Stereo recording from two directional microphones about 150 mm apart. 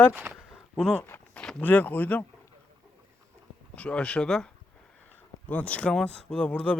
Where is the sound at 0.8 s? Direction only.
5° left (ahead or behind).